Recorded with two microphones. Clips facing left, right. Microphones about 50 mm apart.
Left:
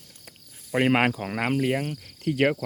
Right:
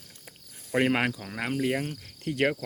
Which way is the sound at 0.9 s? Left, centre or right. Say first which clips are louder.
Left 5 dB; left.